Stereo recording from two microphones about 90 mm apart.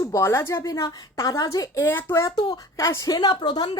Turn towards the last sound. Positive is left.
turn(degrees=60)  # may be behind; listen again after turning